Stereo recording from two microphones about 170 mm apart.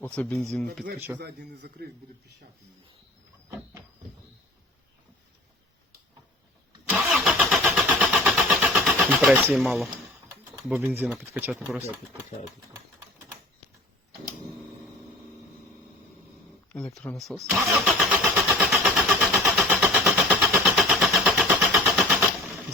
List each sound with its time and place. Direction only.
0.0 s speech: 10° left (ahead or behind)
1.2 s a man's voice: 75° right (ahead or behind)
6.9 s vehicle: 5° right (ahead or behind)
10.8 s speech: 10° right (ahead or behind)
16.7 s speech: 5° left (ahead or behind)
17.4 s vehicle: 5° right (ahead or behind)